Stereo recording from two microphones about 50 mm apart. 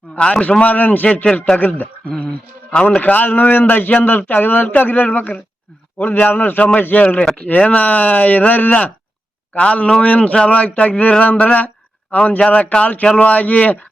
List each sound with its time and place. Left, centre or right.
0.2 s a man's voice: left
0.6 s a man's voice: left
2.8 s a man's voice: left
7.6 s a man's voice: left
7.9 s a man's voice: left
9.6 s a man's voice: left